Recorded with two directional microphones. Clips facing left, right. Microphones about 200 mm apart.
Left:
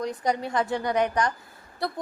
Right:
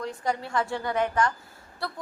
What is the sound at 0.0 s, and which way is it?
A woman's voice, 20° left (ahead or behind).